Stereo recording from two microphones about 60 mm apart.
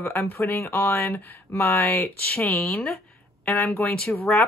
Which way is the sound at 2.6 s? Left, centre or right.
Centre.